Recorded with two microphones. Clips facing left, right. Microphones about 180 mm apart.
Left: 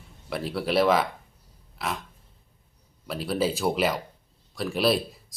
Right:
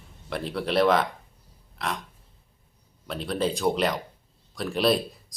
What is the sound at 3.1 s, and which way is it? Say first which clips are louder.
Speech: left 1 dB; 5° left (ahead or behind).